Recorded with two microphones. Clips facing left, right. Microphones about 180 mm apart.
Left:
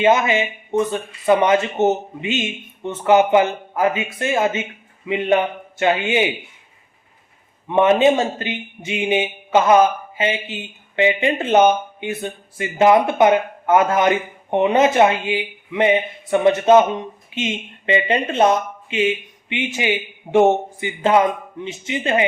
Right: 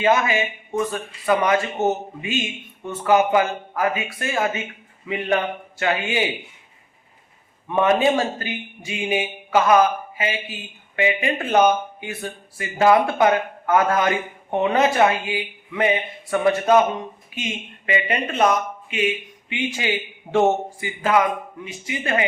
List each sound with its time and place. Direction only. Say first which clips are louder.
0.0 s speech: left 3 dB; 20° left (ahead or behind)
7.7 s speech: left 4 dB; 20° left (ahead or behind)